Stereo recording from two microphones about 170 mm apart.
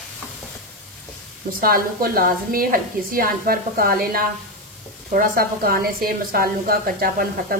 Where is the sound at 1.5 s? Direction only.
60° right (ahead or behind).